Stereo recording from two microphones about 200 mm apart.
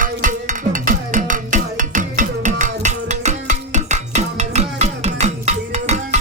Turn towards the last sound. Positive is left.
turn(degrees=-35)  # may be behind; listen again after turning